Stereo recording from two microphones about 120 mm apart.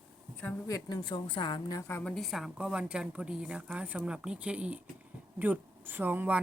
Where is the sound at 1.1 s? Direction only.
45° left (ahead or behind).